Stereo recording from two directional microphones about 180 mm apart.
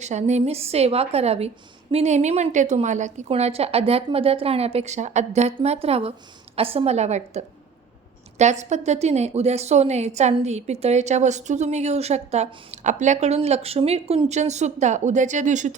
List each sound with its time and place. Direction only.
0.0 s a woman's voice: 40° right (ahead or behind)